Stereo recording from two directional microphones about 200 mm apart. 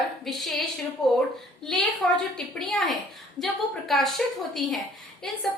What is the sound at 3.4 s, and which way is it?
Speech, 20° left (ahead or behind).